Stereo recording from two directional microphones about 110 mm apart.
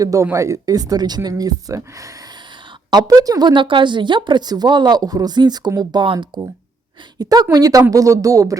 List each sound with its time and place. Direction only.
0.0 s speech: 30° right (ahead or behind)